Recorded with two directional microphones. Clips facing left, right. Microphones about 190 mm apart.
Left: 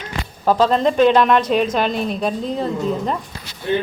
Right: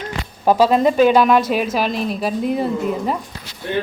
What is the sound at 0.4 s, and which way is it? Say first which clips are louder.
A woman's voice: right 2 dB; 10° right (ahead or behind).